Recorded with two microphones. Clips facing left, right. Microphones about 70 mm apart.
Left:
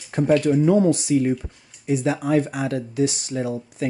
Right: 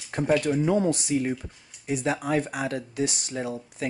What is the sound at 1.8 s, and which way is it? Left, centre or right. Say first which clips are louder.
Speech: left 5 dB; centre.